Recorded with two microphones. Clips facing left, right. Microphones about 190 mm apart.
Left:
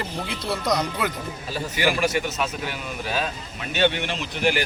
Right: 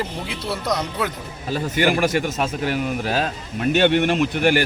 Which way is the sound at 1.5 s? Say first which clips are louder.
Right 5 dB; 50° right (ahead or behind).